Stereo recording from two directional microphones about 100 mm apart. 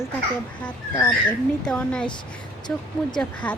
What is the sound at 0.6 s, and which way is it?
Speech, 15° left (ahead or behind).